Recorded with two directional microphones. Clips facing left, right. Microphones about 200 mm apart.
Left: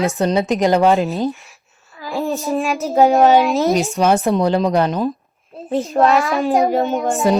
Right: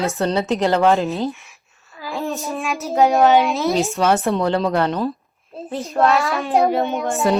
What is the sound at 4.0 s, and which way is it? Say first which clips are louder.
A woman's voice: left 3 dB; 15° left (ahead or behind).